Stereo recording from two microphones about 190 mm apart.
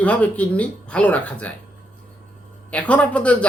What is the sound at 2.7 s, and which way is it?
Speech, 5° left (ahead or behind).